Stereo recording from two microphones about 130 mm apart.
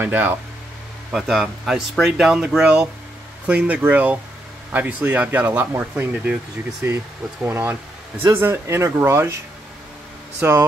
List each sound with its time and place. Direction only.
0.0 s speech: 15° right (ahead or behind)
1.1 s speech: 5° right (ahead or behind); by 9.4 s 20° right (ahead or behind)
10.4 s speech: 15° right (ahead or behind)